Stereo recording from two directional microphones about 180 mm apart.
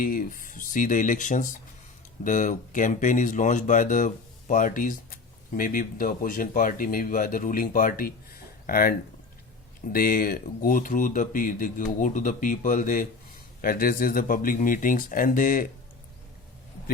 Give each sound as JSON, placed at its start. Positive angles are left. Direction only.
{"t": 0.0, "sound": "speech", "side_deg": 50}